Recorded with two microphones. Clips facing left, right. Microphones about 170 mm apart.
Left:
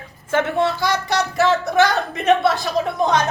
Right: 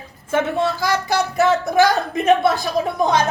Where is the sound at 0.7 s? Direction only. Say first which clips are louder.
Right 1 dB; 5° right (ahead or behind).